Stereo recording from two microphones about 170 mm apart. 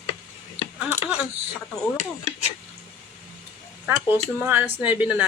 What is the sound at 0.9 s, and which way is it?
Speech, 10° right (ahead or behind).